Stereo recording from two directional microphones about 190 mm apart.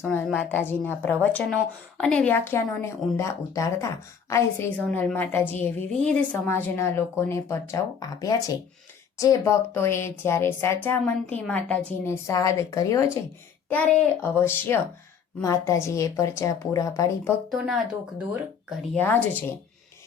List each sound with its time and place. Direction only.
0.0 s a woman's voice: 5° left (ahead or behind)
13.7 s a woman's voice: 5° left (ahead or behind)
17.5 s speech: centre (ahead or behind)
18.9 s a woman's voice: 10° left (ahead or behind)